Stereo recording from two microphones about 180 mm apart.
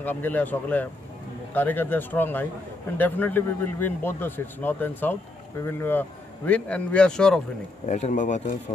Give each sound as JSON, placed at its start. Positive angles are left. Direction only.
{"t": 0.0, "sound": "speech", "side_deg": 10}
{"t": 7.9, "sound": "speech", "side_deg": 45}